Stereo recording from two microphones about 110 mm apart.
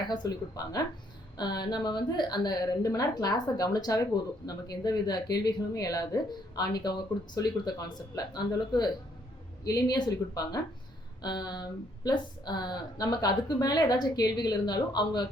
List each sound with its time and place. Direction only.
0.1 s a woman's voice: 35° left (ahead or behind)